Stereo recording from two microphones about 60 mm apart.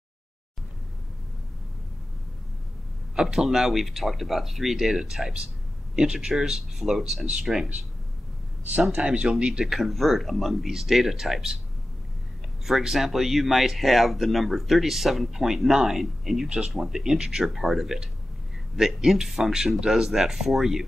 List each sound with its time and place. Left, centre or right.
3.2 s speech: centre
8.9 s speech: centre
9.8 s speech: centre
12.6 s speech: centre
16.4 s speech: centre